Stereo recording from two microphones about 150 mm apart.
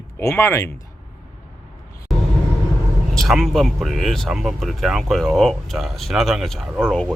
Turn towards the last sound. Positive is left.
turn(degrees=5)  # may be behind; listen again after turning